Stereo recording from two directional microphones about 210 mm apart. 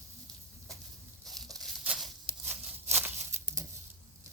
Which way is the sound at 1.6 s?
Centre (ahead or behind).